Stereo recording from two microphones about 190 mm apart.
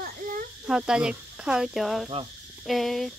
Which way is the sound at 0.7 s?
5° right (ahead or behind).